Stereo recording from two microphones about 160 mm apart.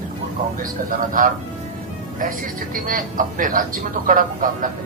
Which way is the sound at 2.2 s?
55° right (ahead or behind).